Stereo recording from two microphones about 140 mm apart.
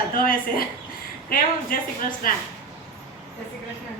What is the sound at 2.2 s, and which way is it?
Speech, 85° left.